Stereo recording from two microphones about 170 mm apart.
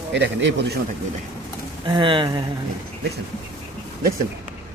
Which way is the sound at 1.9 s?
30° right (ahead or behind).